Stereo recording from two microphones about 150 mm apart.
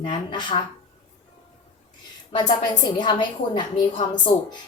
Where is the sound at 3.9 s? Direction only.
60° left (ahead or behind).